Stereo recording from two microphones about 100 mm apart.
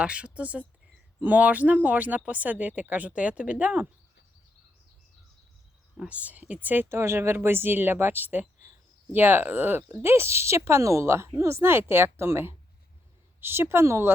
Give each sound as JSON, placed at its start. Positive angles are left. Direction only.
{"t": 0.0, "sound": "speech", "side_deg": -10}
{"t": 6.0, "sound": "speech", "side_deg": -15}